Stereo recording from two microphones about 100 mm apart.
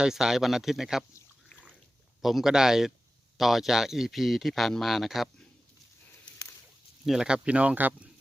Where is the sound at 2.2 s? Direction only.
Centre (ahead or behind).